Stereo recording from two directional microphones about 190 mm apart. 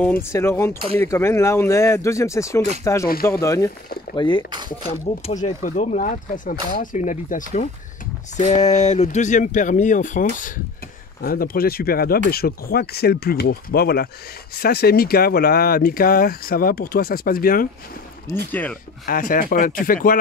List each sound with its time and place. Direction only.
0.0 s speech: 10° left (ahead or behind)
4.8 s speech: 35° left (ahead or behind)
18.5 s speech: 10° left (ahead or behind)
19.0 s speech: 45° left (ahead or behind)